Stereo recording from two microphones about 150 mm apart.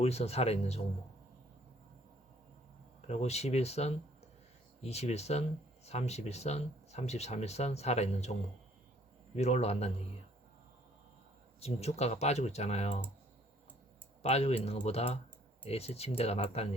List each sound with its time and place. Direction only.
0.0 s speech: 45° left (ahead or behind)
3.1 s speech: 45° left (ahead or behind)
11.6 s speech: 45° left (ahead or behind)
14.2 s speech: 45° left (ahead or behind)